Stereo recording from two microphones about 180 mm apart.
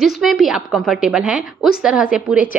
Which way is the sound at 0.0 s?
Centre (ahead or behind).